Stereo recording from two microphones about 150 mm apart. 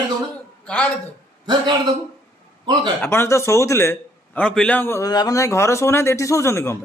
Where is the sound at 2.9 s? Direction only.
15° left (ahead or behind).